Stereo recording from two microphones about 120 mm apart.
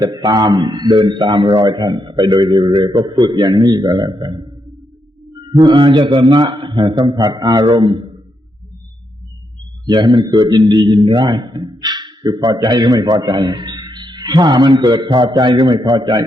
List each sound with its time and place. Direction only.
0.0 s a man's voice: 35° right (ahead or behind)
9.8 s a man's voice: 40° right (ahead or behind)